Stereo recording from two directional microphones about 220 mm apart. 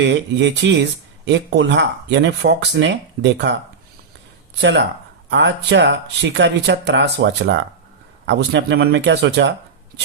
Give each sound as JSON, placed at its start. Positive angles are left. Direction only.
{"t": 0.0, "sound": "speech", "side_deg": -55}
{"t": 4.6, "sound": "speech", "side_deg": -55}